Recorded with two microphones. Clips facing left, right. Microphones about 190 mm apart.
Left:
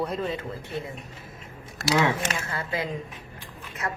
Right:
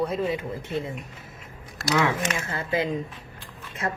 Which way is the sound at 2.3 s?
20° right (ahead or behind).